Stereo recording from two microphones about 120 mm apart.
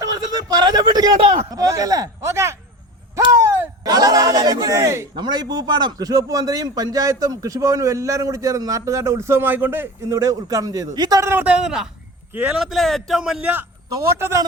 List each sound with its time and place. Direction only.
0.0 s a sound: 30° right (ahead or behind)
1.5 s a man's voice: 30° right (ahead or behind)
3.3 s a sound: 25° right (ahead or behind)
3.8 s speech: 30° right (ahead or behind)
5.1 s a man's voice: 35° right (ahead or behind)
11.3 s a man's voice: 10° right (ahead or behind)
12.5 s speech: centre (ahead or behind)
13.9 s a man's voice: 20° right (ahead or behind)